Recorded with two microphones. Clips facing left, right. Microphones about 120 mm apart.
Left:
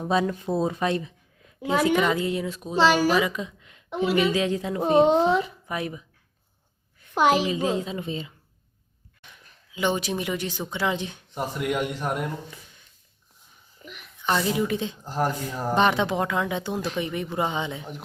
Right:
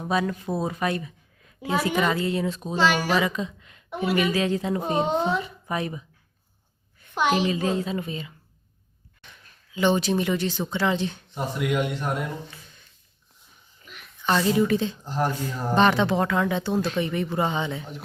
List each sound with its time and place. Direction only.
0.1 s speech: 25° left (ahead or behind)
2.7 s speech: 35° left (ahead or behind)
3.1 s a woman's voice: 10° left (ahead or behind)
4.9 s speech: centre (ahead or behind)
7.1 s a child's voice: 35° left (ahead or behind)
7.5 s speech: 15° left (ahead or behind)
9.2 s speech: 10° left (ahead or behind)
14.3 s speech: 15° left (ahead or behind)